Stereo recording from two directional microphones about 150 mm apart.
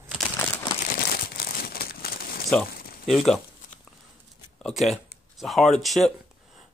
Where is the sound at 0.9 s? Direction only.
90° left.